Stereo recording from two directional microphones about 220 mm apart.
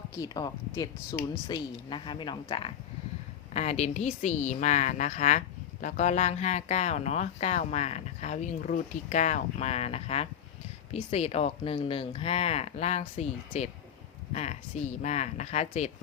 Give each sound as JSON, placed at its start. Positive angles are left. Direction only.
{"t": 0.2, "sound": "speech", "side_deg": 15}